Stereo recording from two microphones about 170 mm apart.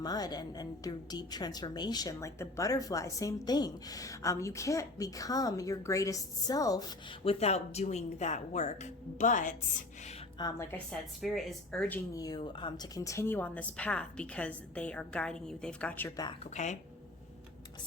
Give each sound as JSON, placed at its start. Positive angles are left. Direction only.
{"t": 0.0, "sound": "a woman's voice", "side_deg": 25}
{"t": 7.3, "sound": "speech", "side_deg": 40}
{"t": 10.3, "sound": "a woman's voice", "side_deg": 25}
{"t": 11.2, "sound": "speech", "side_deg": 0}
{"t": 12.1, "sound": "a woman's voice", "side_deg": 20}
{"t": 16.4, "sound": "speech", "side_deg": 45}